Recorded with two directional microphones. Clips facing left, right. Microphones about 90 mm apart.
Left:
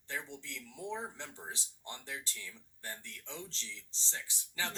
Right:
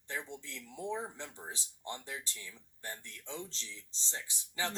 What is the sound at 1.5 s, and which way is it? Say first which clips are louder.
Speech: right 3 dB; 20° right (ahead or behind).